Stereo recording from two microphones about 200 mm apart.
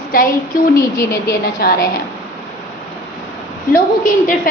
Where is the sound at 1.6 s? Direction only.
55° left (ahead or behind).